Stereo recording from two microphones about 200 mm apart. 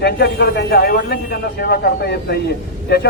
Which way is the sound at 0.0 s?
55° left (ahead or behind).